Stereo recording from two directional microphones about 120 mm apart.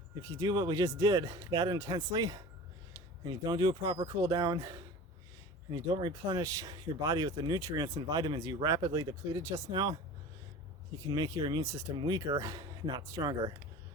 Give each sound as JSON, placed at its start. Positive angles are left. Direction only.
{"t": 0.2, "sound": "speech", "side_deg": -25}
{"t": 11.0, "sound": "speech", "side_deg": -30}
{"t": 11.6, "sound": "speech", "side_deg": -25}